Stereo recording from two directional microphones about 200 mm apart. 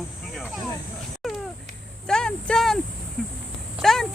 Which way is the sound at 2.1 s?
5° left (ahead or behind).